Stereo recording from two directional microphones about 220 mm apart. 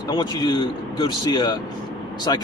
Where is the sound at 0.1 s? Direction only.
20° left (ahead or behind).